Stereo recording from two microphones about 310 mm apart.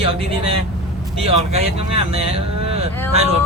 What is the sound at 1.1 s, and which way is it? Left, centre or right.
Speech, centre.